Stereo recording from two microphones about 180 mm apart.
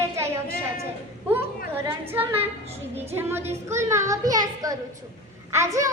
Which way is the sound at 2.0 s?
10° right (ahead or behind).